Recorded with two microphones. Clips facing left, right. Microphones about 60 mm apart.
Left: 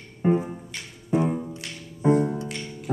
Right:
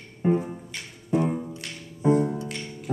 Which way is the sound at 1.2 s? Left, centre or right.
Centre.